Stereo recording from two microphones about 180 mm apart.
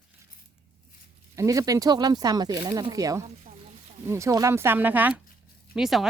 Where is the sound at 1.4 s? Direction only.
20° right (ahead or behind).